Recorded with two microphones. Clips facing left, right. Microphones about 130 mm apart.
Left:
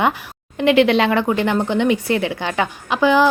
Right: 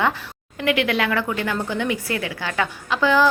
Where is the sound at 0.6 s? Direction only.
25° left (ahead or behind).